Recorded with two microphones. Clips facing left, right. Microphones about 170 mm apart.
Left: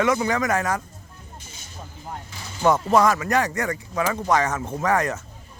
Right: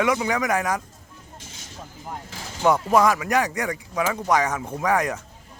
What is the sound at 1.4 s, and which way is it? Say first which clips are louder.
Vehicle: right 1 dB; 90° right.